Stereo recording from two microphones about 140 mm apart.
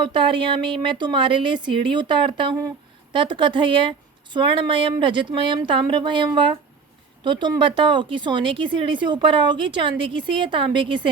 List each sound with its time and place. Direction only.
0.0 s a woman's voice: 35° right (ahead or behind)